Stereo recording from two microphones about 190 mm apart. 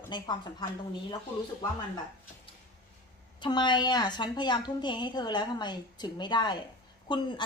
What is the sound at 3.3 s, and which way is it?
Speech, 25° left (ahead or behind).